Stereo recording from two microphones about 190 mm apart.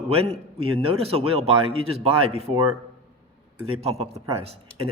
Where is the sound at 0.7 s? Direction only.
30° right (ahead or behind).